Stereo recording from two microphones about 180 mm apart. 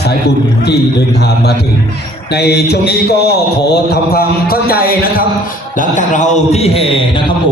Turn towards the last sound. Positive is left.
turn(degrees=35)  # may be behind; listen again after turning